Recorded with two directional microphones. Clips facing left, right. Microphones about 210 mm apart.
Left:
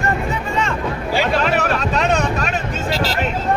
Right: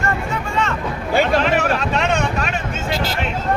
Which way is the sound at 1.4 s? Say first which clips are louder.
Even; 40° left (ahead or behind).